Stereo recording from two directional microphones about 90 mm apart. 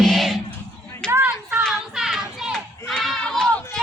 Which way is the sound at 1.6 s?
Centre (ahead or behind).